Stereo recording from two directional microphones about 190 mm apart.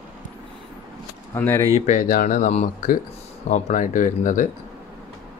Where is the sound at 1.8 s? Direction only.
40° left (ahead or behind).